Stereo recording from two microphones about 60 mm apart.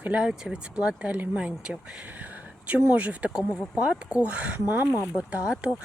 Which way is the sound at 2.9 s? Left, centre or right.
Right.